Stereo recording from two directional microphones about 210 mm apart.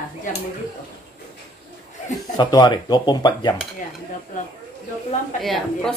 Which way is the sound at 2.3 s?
20° left (ahead or behind).